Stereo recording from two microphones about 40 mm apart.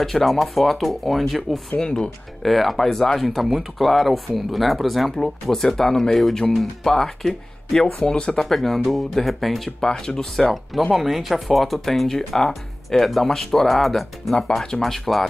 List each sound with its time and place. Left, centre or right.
0.0 s speech: centre
1.8 s speech: centre
2.4 s speech: centre
5.2 s speech: centre
7.8 s speech: left
8.5 s speech: centre
9.8 s speech: centre
10.9 s speech: centre